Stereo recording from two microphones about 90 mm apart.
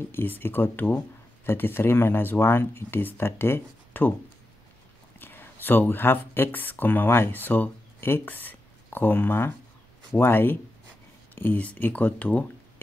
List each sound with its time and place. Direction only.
0.1 s speech: 25° left (ahead or behind)
5.2 s speech: 25° left (ahead or behind)